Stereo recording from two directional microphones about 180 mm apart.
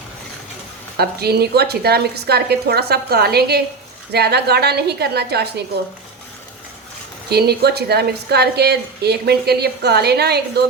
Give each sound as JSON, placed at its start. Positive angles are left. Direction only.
{"t": 0.9, "sound": "a woman's voice", "side_deg": -60}
{"t": 7.3, "sound": "a woman's voice", "side_deg": -65}